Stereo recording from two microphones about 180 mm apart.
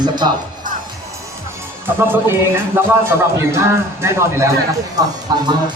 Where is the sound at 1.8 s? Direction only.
10° right (ahead or behind).